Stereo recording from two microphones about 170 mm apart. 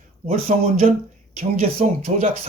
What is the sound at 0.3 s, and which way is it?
Speech, 40° right (ahead or behind).